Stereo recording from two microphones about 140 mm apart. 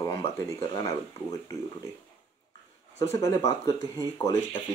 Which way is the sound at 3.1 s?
20° left (ahead or behind).